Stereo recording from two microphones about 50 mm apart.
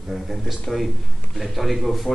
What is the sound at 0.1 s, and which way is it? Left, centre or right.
A man's voice, centre.